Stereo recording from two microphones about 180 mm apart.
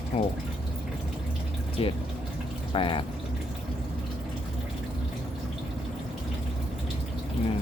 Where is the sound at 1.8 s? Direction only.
30° left (ahead or behind).